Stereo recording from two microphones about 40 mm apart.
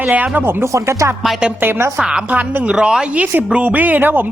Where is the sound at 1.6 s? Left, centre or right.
Right.